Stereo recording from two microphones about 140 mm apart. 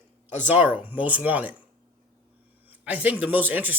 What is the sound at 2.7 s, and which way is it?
Speech, 10° right (ahead or behind).